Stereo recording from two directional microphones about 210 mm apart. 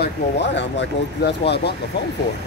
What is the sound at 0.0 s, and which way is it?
Speech, 55° left (ahead or behind).